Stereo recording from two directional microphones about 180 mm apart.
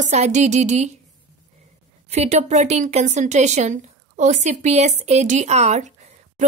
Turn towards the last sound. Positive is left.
turn(degrees=-40)  # may be behind; listen again after turning